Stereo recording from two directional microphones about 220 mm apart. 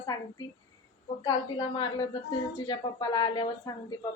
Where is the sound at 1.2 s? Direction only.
20° left (ahead or behind).